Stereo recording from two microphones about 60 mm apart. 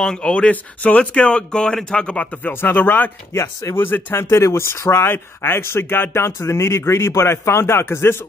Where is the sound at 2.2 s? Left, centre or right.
Left.